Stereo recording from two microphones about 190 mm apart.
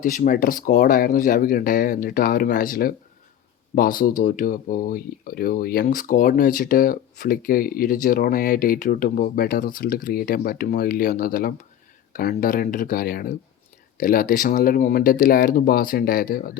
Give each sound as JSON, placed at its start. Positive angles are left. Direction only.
{"t": 0.0, "sound": "speech", "side_deg": 45}